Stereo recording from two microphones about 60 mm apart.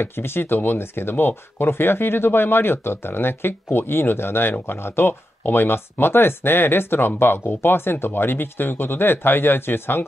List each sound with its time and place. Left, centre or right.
0.0 s speech: left